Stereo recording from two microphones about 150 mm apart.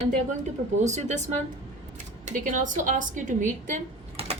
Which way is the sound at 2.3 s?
55° right (ahead or behind).